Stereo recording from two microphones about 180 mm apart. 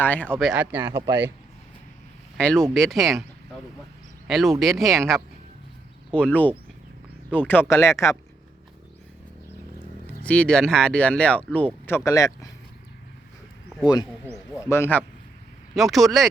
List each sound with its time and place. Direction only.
0.0 s speech: 10° left (ahead or behind); by 1.3 s 15° right (ahead or behind)
2.4 s speech: 5° left (ahead or behind)
4.3 s speech: centre (ahead or behind); by 8.1 s 15° left (ahead or behind)
10.1 s speech: 5° left (ahead or behind)
13.8 s speech: 25° left (ahead or behind)
15.7 s speech: centre (ahead or behind)